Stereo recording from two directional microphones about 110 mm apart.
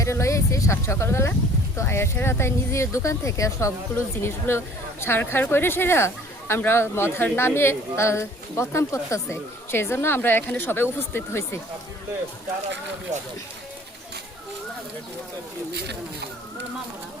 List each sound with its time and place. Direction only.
0.0 s speech: 25° left (ahead or behind)